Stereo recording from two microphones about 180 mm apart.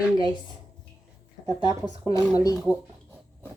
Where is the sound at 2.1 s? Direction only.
20° left (ahead or behind).